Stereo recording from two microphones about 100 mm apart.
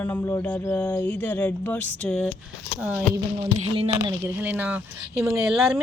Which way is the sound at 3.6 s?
80° right.